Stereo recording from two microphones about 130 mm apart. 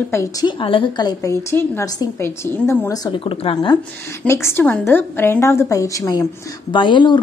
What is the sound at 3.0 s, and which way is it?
Speech, 40° left (ahead or behind).